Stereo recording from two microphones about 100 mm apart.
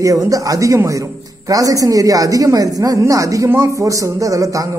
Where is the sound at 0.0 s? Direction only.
35° right (ahead or behind).